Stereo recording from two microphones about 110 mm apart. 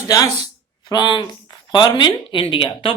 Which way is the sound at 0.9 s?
45° left (ahead or behind).